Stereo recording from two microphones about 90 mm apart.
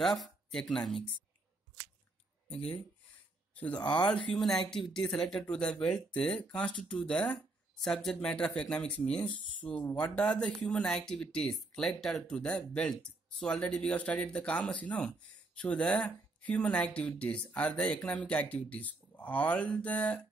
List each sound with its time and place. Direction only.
0.0 s speech: centre (ahead or behind)
2.5 s speech: 15° left (ahead or behind)